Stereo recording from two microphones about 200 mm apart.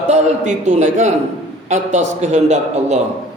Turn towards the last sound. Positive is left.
turn(degrees=-35)  # may be behind; listen again after turning